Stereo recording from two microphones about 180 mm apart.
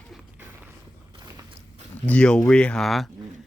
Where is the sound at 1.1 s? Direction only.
25° right (ahead or behind).